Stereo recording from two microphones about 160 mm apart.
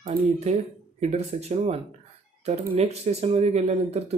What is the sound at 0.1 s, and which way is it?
Speech, 40° right (ahead or behind).